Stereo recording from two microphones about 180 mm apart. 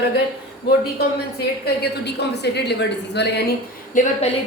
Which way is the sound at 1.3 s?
65° left (ahead or behind).